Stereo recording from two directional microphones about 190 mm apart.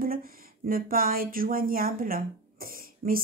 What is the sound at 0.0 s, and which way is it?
Speech, 50° right (ahead or behind).